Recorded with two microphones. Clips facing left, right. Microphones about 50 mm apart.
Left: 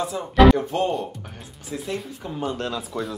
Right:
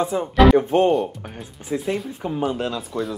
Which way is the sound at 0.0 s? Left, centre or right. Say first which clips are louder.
Even; right.